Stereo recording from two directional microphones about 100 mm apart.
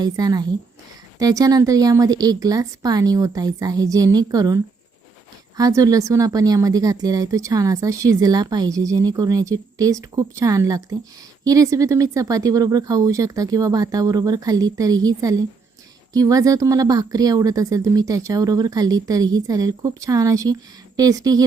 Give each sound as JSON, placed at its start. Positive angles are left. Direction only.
{"t": 0.0, "sound": "a woman's voice", "side_deg": -40}